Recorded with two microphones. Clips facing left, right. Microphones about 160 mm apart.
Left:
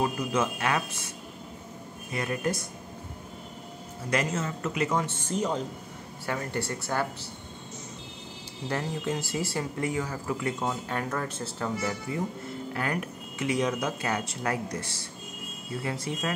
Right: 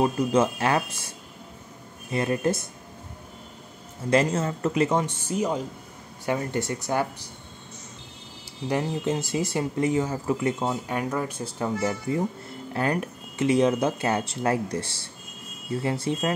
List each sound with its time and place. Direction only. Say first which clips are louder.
0.0 s speech: right 6 dB; 30° right (ahead or behind)
2.1 s speech: right 5 dB; 25° right (ahead or behind)
4.1 s speech: right 6 dB; 30° right (ahead or behind)
5.0 s speech: right 3 dB; 10° right (ahead or behind)
6.2 s speech: right 5 dB; 20° right (ahead or behind)
8.6 s speech: right 5 dB; 20° right (ahead or behind)
12.7 s speech: right 7 dB; 30° right (ahead or behind)